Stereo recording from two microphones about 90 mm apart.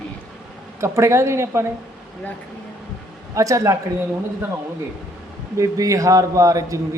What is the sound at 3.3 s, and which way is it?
Speech, 35° right (ahead or behind).